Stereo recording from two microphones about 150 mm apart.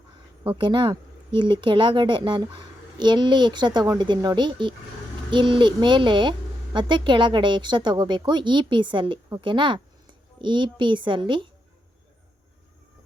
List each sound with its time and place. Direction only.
0.4 s speech: 30° right (ahead or behind)